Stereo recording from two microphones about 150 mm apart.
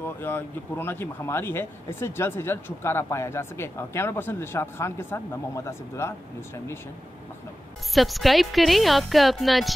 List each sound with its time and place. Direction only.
0.0 s speech: 15° left (ahead or behind)
7.9 s speech: centre (ahead or behind)